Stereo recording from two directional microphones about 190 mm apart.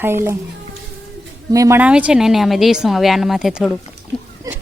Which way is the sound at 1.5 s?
15° right (ahead or behind).